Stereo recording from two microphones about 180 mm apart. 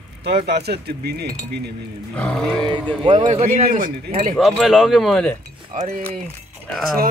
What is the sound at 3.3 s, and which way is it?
Speech, 40° right (ahead or behind).